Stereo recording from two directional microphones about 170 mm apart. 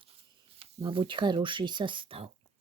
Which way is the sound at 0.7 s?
30° right (ahead or behind).